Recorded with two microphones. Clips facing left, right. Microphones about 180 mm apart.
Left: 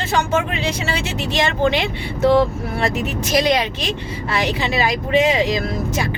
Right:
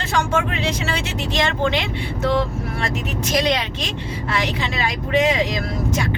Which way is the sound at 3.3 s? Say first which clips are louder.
Left 3 dB; 10° left (ahead or behind).